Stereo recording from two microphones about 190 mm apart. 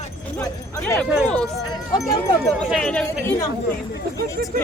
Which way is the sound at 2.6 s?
Centre (ahead or behind).